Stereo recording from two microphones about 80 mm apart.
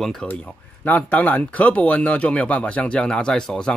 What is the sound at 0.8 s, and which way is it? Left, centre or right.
Speech, centre.